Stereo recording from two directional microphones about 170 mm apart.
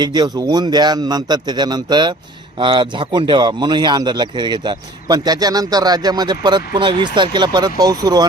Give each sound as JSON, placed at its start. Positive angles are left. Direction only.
{"t": 0.0, "sound": "speech", "side_deg": -25}